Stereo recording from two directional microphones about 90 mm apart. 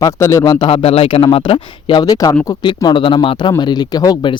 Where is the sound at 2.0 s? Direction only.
40° left (ahead or behind).